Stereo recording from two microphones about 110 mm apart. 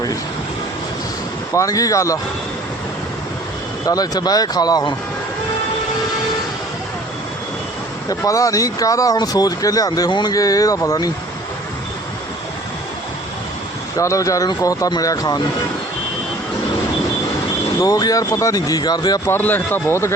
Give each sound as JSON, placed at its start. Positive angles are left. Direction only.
{"t": 1.5, "sound": "speech", "side_deg": 30}
{"t": 3.8, "sound": "speech", "side_deg": 35}
{"t": 8.2, "sound": "speech", "side_deg": 30}
{"t": 14.0, "sound": "speech", "side_deg": 30}
{"t": 17.7, "sound": "speech", "side_deg": 35}
{"t": 19.3, "sound": "speech", "side_deg": 15}